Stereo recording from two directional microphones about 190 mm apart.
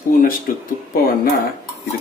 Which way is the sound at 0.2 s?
50° left (ahead or behind).